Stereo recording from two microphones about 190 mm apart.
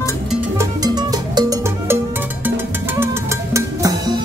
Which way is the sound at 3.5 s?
20° right (ahead or behind).